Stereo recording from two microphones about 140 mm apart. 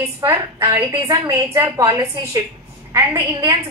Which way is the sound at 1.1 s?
20° right (ahead or behind).